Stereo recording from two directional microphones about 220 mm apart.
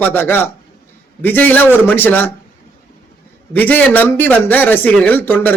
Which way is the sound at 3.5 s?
5° left (ahead or behind).